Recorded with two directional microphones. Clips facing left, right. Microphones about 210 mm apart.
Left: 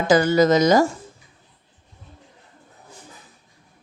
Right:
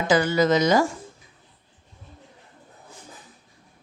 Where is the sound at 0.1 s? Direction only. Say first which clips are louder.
Left 4 dB; 40° left (ahead or behind).